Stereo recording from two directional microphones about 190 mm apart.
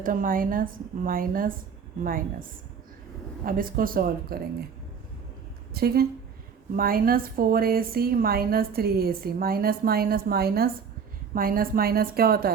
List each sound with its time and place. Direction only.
0.0 s a woman's voice: 45° right (ahead or behind)
3.4 s a woman's voice: 50° right (ahead or behind)
5.7 s a woman's voice: 55° right (ahead or behind)